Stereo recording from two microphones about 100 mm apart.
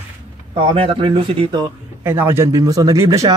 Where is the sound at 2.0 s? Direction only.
25° right (ahead or behind).